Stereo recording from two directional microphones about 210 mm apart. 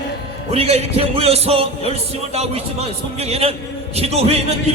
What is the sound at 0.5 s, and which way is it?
Speech, 30° right (ahead or behind).